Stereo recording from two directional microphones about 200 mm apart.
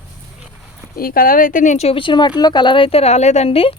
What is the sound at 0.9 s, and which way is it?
A woman's voice, 45° left (ahead or behind).